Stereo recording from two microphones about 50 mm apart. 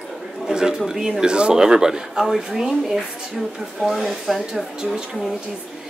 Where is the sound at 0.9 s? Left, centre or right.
Centre.